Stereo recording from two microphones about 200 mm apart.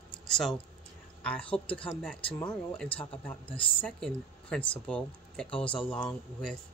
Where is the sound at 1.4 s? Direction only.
30° left (ahead or behind).